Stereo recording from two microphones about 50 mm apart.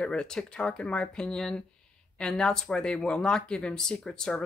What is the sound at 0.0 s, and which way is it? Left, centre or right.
Speech, centre.